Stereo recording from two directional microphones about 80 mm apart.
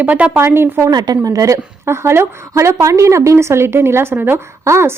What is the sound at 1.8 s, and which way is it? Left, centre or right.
A woman's voice, right.